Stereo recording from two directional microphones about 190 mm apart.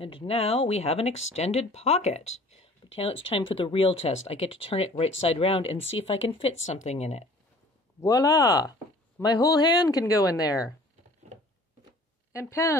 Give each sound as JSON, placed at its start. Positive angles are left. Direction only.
{"t": 0.0, "sound": "speech", "side_deg": 30}
{"t": 8.0, "sound": "speech", "side_deg": 15}
{"t": 12.3, "sound": "speech", "side_deg": 15}